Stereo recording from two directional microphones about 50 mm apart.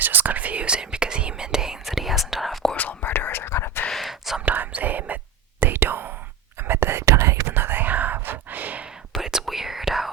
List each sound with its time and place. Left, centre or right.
0.0 s whispering: right; by 2.7 s centre
2.7 s whispering: left
3.5 s whispering: left
3.9 s whispering: centre
4.4 s whispering: right
6.8 s whispering: right
7.4 s whispering: right
8.2 s sigh: right
9.2 s whispering: centre